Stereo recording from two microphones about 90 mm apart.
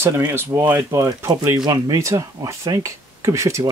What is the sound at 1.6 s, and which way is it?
Speech, 40° right (ahead or behind).